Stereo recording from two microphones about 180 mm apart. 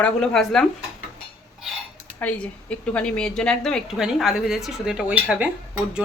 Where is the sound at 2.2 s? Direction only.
10° left (ahead or behind).